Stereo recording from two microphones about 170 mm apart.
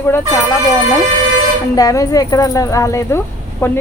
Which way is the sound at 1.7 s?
20° left (ahead or behind).